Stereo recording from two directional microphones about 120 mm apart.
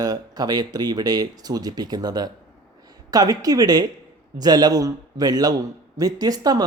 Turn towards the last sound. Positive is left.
turn(degrees=-35)  # may be behind; listen again after turning